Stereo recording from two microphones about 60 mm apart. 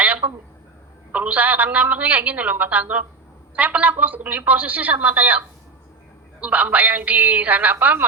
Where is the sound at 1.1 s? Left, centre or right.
Right.